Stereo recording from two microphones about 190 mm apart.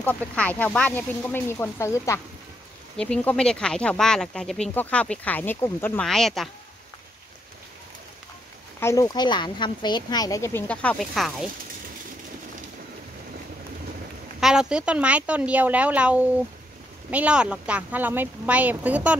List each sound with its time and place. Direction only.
0.0 s speech: 10° left (ahead or behind)
8.7 s speech: 15° left (ahead or behind); by 11.4 s centre (ahead or behind)
14.4 s speech: 5° right (ahead or behind)